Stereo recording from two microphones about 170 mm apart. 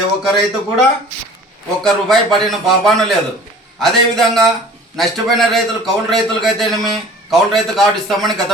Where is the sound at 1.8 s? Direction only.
Centre (ahead or behind).